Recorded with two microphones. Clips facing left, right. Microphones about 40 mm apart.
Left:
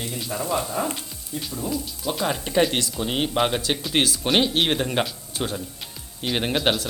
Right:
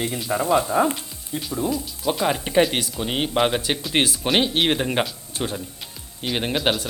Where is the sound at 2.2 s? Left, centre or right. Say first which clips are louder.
Right 2 dB; centre.